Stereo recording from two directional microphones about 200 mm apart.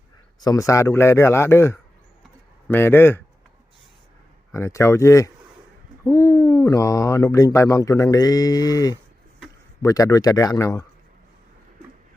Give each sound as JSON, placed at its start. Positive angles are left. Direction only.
{"t": 0.3, "sound": "speech", "side_deg": 15}
{"t": 4.5, "sound": "speech", "side_deg": 15}